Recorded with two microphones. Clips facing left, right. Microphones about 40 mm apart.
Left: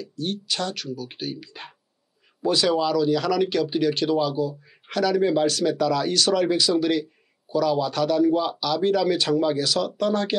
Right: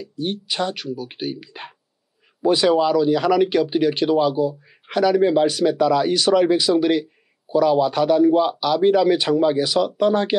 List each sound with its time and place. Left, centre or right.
0.0 s speech: centre